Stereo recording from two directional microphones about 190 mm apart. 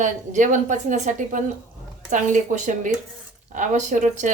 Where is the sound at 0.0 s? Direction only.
40° right (ahead or behind).